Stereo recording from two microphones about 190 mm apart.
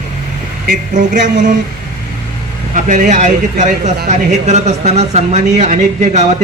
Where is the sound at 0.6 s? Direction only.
45° right (ahead or behind).